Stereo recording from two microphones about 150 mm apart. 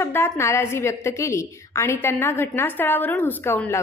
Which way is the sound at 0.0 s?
15° left (ahead or behind).